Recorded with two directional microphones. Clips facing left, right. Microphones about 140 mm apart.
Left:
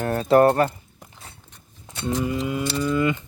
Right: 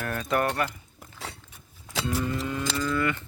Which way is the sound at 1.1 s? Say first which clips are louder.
Right 9 dB; 90° right.